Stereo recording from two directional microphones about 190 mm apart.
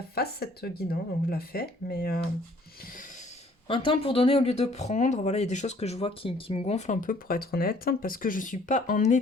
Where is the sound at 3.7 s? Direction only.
25° left (ahead or behind).